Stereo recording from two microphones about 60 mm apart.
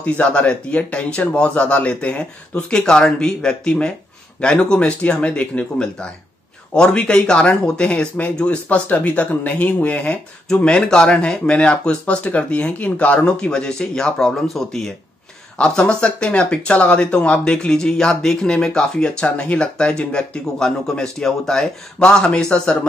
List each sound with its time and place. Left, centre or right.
0.0 s speech: left; by 14.9 s centre
15.5 s speech: centre